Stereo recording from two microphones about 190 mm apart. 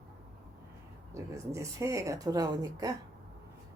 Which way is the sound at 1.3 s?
15° right (ahead or behind).